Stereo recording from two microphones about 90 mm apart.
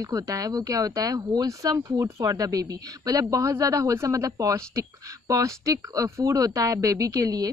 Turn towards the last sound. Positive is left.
turn(degrees=-45)  # may be behind; listen again after turning